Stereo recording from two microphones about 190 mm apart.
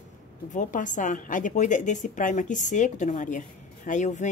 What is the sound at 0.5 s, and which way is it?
A woman's voice, 40° left (ahead or behind).